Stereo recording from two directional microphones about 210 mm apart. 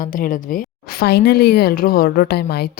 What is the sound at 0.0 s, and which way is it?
Speech, 40° left (ahead or behind).